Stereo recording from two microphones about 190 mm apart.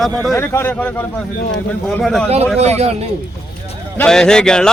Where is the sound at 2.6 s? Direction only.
35° right (ahead or behind).